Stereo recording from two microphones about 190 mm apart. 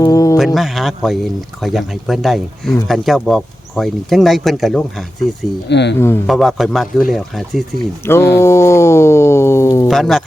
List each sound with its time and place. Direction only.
0.0 s a sound: 15° left (ahead or behind)
0.3 s speech: centre (ahead or behind)
5.6 s speech: 65° left (ahead or behind)
6.0 s a man's voice: 10° left (ahead or behind)
6.2 s speech: centre (ahead or behind)
8.0 s a man's voice: 15° left (ahead or behind)
8.4 s a sound: 15° left (ahead or behind)
9.9 s speech: centre (ahead or behind)